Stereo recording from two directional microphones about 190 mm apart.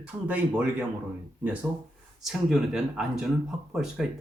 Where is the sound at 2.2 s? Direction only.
Centre (ahead or behind).